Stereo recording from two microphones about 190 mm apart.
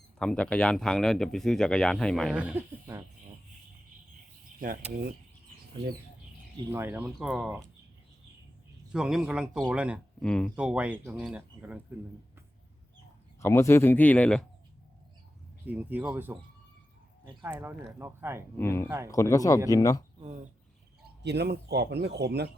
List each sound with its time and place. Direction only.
0.2 s speech: 5° left (ahead or behind); by 3.0 s 10° right (ahead or behind)
6.7 s speech: 15° right (ahead or behind)
8.9 s speech: 5° right (ahead or behind)
13.4 s speech: 15° left (ahead or behind)
15.6 s speech: 10° right (ahead or behind)
17.4 s speech: 10° right (ahead or behind)
18.5 s speech: 10° left (ahead or behind)
18.9 s speech: 15° right (ahead or behind)
19.1 s speech: 15° left (ahead or behind)
20.1 s speech: 35° right (ahead or behind)
21.2 s speech: 60° right (ahead or behind)